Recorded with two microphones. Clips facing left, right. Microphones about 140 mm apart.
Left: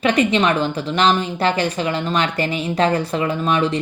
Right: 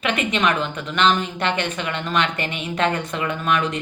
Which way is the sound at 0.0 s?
35° left (ahead or behind).